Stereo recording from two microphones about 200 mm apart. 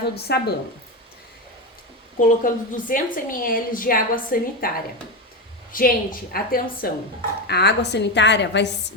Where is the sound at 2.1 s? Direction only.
40° left (ahead or behind).